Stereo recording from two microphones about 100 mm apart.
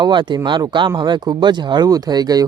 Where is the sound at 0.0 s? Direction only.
50° right (ahead or behind).